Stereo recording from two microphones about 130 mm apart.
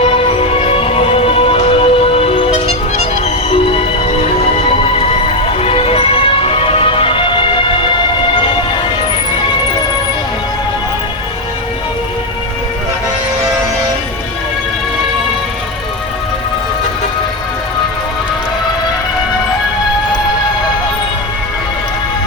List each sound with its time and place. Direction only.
0.0 s music: 50° left (ahead or behind)